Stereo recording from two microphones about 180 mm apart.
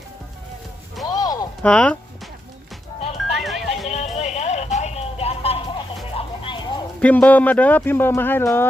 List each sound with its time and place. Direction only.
1.0 s a sound: 20° left (ahead or behind)
1.6 s speech: 5° left (ahead or behind)
3.3 s music: centre (ahead or behind)
3.9 s music: 40° left (ahead or behind)
7.0 s speech: 10° left (ahead or behind)